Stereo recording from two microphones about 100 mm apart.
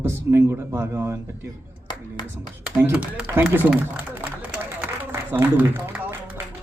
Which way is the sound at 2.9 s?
15° right (ahead or behind).